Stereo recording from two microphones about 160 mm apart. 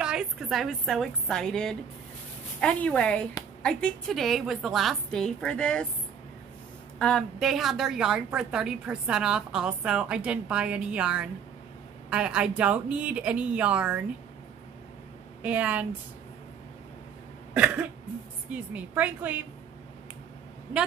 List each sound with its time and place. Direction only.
0.0 s a woman's voice: 5° right (ahead or behind)
7.0 s a woman's voice: 5° left (ahead or behind)
15.4 s a woman's voice: 10° right (ahead or behind)
18.5 s a woman's voice: 10° right (ahead or behind)